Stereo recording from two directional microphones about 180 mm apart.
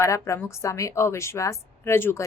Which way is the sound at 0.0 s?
15° left (ahead or behind).